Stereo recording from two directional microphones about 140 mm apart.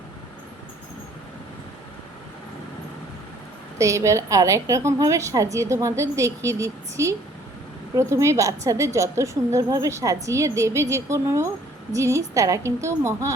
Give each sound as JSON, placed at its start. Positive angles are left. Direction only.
{"t": 3.8, "sound": "a woman's voice", "side_deg": -20}